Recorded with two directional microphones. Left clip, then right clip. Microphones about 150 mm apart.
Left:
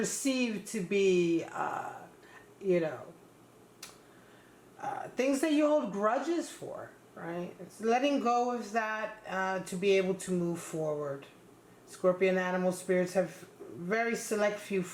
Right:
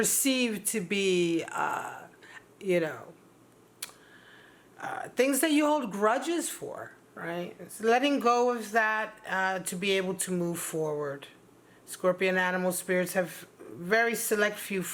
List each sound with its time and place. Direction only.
0.3 s speech: 30° right (ahead or behind)
4.8 s speech: 35° right (ahead or behind)